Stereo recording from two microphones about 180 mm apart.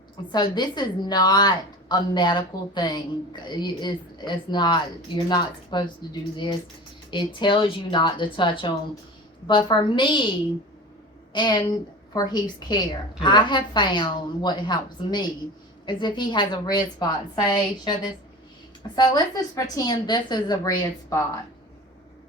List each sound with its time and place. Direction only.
0.3 s speech: 25° left (ahead or behind)
11.3 s speech: 25° left (ahead or behind)